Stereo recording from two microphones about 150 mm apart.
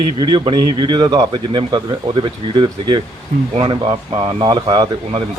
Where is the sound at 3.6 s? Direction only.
35° right (ahead or behind).